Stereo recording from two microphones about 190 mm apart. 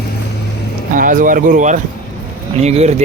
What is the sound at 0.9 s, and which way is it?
Speech, 45° right (ahead or behind).